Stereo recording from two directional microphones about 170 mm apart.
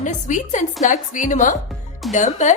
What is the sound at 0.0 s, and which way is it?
A woman's voice, 45° left (ahead or behind).